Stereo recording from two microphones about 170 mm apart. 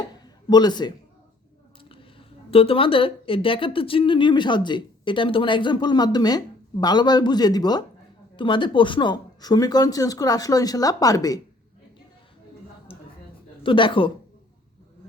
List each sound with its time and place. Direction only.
0.5 s a woman's voice: 25° left (ahead or behind)
13.6 s speech: 30° left (ahead or behind)